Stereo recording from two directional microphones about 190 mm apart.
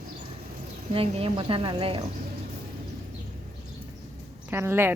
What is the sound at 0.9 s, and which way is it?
A woman's voice, 30° right (ahead or behind).